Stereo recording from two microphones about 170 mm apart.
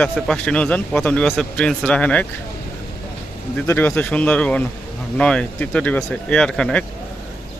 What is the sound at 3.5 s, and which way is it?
Speech, 10° left (ahead or behind).